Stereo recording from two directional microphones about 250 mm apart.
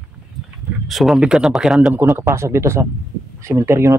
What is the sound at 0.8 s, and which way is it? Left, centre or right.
Speech, centre.